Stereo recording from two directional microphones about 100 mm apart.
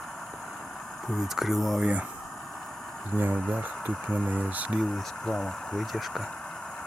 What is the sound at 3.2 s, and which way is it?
Speech, 20° right (ahead or behind).